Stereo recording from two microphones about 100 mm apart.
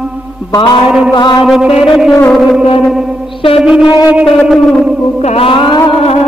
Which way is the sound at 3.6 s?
10° right (ahead or behind).